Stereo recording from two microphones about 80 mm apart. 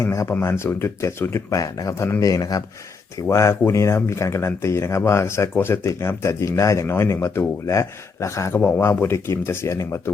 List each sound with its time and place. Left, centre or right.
0.0 s speech: left
1.5 s speech: left
2.0 s speech: left
2.2 s speech: left
3.2 s speech: left
8.5 s speech: left